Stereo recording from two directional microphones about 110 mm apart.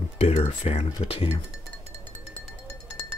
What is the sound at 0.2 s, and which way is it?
Speech, 70° left (ahead or behind).